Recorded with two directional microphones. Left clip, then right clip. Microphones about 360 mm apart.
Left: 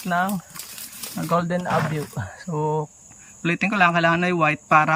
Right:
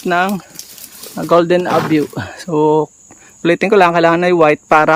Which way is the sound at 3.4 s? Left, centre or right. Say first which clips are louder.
Right 9 dB; centre.